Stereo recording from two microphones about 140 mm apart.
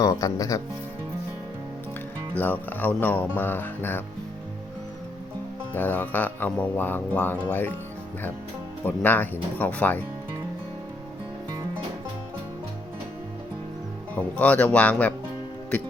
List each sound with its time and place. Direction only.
0.0 s speech: 25° left (ahead or behind)
2.3 s speech: 15° left (ahead or behind)
5.7 s speech: 15° left (ahead or behind)
8.8 s speech: 15° left (ahead or behind)
14.2 s speech: 10° left (ahead or behind)